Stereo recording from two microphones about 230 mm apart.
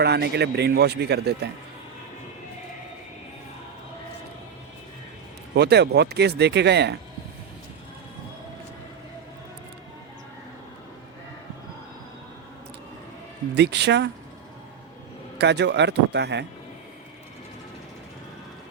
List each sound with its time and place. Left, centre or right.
0.0 s speech: right
5.5 s speech: right
13.5 s speech: right
15.4 s speech: right